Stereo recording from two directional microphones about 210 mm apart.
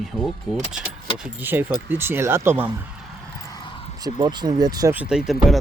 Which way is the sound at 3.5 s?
20° left (ahead or behind).